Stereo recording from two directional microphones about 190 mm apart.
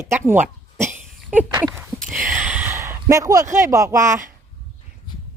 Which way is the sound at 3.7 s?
15° right (ahead or behind).